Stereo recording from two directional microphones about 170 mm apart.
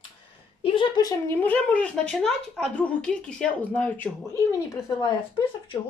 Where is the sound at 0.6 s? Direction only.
30° left (ahead or behind); by 4.3 s 10° left (ahead or behind).